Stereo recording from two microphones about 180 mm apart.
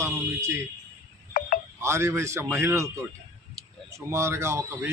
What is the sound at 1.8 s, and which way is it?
A man's voice, 15° right (ahead or behind).